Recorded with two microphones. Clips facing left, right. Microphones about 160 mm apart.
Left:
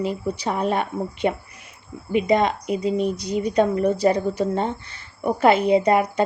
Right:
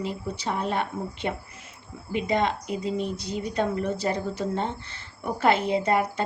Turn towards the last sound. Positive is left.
turn(degrees=15)  # may be behind; listen again after turning